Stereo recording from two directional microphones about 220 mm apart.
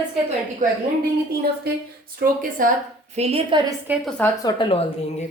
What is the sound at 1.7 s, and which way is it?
A woman's voice, 45° right (ahead or behind).